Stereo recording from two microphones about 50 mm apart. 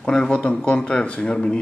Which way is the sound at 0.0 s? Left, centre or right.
Centre.